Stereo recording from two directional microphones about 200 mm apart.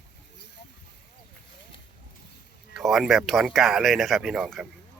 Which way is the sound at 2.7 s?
Centre (ahead or behind).